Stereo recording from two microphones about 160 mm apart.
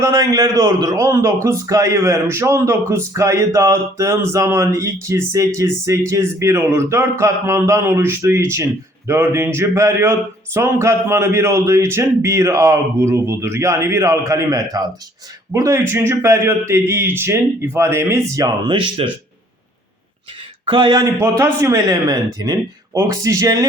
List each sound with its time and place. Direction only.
0.0 s a man's voice: 20° right (ahead or behind)
20.7 s speech: 30° right (ahead or behind)
21.2 s speech: 15° right (ahead or behind)